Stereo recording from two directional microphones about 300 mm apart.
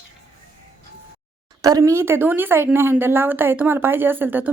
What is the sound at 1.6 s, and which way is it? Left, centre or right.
A woman's voice, centre.